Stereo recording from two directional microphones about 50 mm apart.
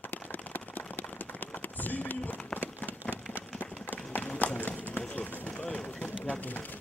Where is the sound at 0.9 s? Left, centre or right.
Left.